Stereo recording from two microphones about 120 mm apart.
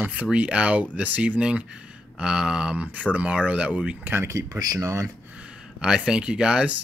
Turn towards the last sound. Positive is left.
turn(degrees=-10)  # may be behind; listen again after turning